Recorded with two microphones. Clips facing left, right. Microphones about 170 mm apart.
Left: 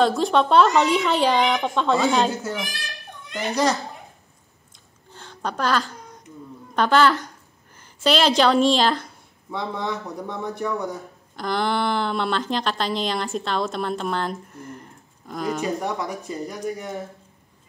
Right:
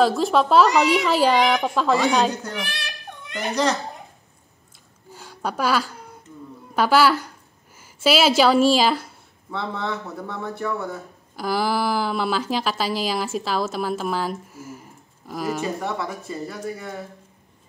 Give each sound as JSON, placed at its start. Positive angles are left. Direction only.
{"t": 0.0, "sound": "a woman's voice", "side_deg": 0}
{"t": 2.6, "sound": "a sound", "side_deg": -70}
{"t": 5.1, "sound": "a sound", "side_deg": -10}
{"t": 6.7, "sound": "a woman's voice", "side_deg": -5}
{"t": 9.5, "sound": "speech", "side_deg": 15}
{"t": 11.3, "sound": "a woman's voice", "side_deg": -5}
{"t": 15.8, "sound": "speech", "side_deg": 15}